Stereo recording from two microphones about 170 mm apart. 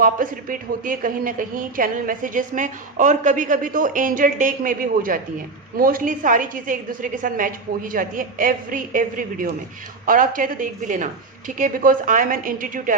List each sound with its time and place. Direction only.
0.0 s a woman's voice: 55° right (ahead or behind)